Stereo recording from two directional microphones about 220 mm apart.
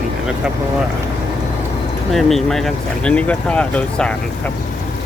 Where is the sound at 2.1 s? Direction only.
Centre (ahead or behind).